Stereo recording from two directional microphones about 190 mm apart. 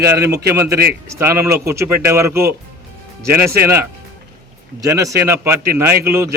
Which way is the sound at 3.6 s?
15° right (ahead or behind).